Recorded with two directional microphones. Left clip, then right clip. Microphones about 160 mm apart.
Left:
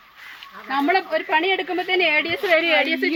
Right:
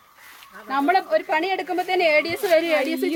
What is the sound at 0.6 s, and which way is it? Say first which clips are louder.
Speech: even; 45° right (ahead or behind).